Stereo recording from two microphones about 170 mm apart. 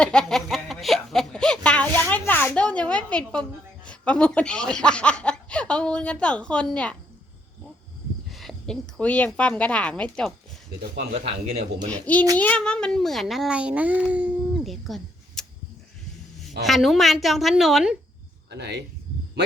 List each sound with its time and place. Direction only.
0.0 s speech: 5° left (ahead or behind)
8.3 s a woman's voice: centre (ahead or behind)
11.3 s a man's voice: 35° right (ahead or behind)
11.9 s speech: 10° left (ahead or behind)
16.6 s speech: centre (ahead or behind)
18.5 s speech: 80° right